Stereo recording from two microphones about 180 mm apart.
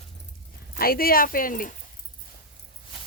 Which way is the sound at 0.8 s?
55° left (ahead or behind).